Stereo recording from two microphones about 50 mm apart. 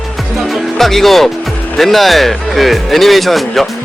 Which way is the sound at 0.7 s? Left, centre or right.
Centre.